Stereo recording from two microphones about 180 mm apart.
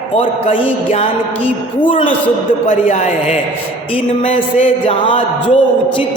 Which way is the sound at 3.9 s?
30° left (ahead or behind).